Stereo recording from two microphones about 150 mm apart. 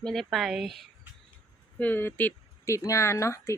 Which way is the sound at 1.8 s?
10° left (ahead or behind).